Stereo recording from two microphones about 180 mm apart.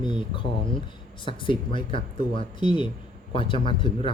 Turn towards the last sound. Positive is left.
turn(degrees=25)  # may be behind; listen again after turning